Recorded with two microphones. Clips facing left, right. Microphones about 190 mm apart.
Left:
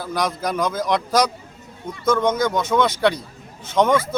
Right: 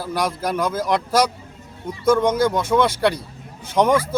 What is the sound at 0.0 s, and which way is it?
A man's voice, 5° right (ahead or behind).